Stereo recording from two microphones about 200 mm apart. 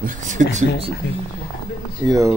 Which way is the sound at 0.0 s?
40° right (ahead or behind).